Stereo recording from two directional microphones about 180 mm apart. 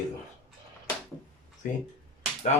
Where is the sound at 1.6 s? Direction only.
45° left (ahead or behind).